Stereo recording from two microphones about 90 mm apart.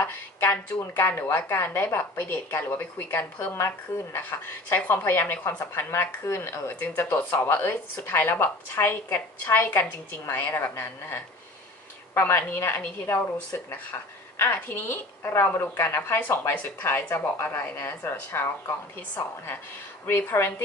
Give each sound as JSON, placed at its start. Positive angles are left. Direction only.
{"t": 0.0, "sound": "a sound", "side_deg": 25}
{"t": 0.7, "sound": "a woman's voice", "side_deg": 25}
{"t": 14.3, "sound": "a woman's voice", "side_deg": 25}